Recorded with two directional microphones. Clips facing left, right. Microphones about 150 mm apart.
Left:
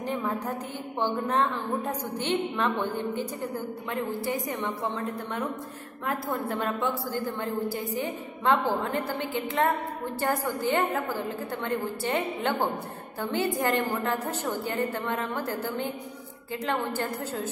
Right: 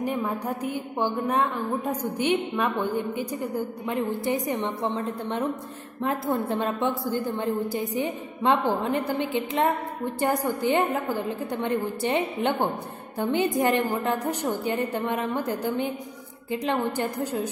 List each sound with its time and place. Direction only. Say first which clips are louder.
0.0 s a woman's voice: right 2 dB; 10° right (ahead or behind)